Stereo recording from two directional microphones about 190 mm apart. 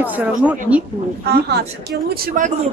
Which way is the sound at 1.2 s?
60° right (ahead or behind).